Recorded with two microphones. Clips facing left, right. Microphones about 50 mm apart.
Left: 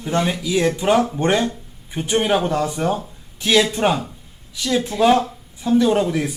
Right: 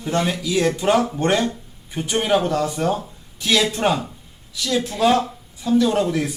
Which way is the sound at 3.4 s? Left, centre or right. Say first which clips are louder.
Left 2 dB; left.